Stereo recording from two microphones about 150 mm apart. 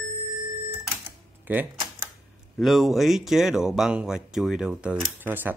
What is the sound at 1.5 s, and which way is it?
Speech, 10° right (ahead or behind).